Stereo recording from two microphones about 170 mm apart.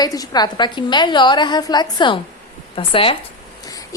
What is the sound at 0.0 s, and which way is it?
A woman's voice, 20° left (ahead or behind).